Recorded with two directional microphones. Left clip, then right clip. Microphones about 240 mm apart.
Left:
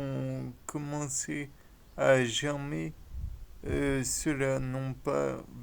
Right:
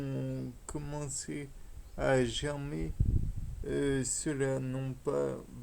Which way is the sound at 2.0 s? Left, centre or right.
Left.